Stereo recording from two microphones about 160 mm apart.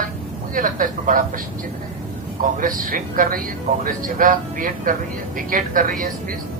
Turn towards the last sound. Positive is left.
turn(degrees=-55)  # may be behind; listen again after turning